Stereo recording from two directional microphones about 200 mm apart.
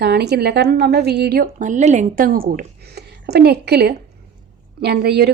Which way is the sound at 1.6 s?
35° right (ahead or behind).